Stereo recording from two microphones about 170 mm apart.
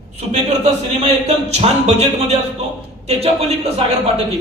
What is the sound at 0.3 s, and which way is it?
Speech, 40° right (ahead or behind).